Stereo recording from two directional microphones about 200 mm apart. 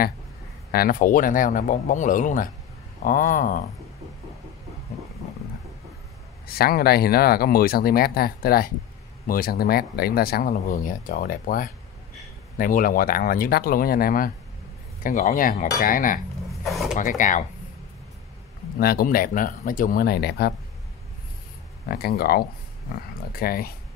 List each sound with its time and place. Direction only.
0.7 s speech: 50° left (ahead or behind)
6.4 s speech: 50° left (ahead or behind)
18.8 s speech: 50° left (ahead or behind)
21.8 s speech: 50° left (ahead or behind)